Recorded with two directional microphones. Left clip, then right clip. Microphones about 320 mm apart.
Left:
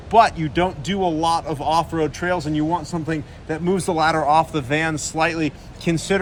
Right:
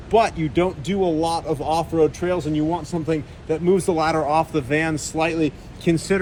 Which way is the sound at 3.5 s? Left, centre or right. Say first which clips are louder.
Right 3 dB; centre.